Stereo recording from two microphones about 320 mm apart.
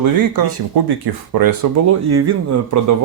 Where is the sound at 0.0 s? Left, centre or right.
Right.